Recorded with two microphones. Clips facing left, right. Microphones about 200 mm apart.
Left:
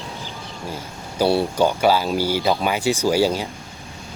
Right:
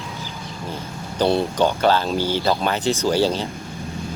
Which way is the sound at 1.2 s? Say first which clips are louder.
Left 1 dB; 5° left (ahead or behind).